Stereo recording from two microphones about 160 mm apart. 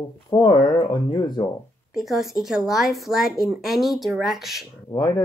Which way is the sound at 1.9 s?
Centre (ahead or behind).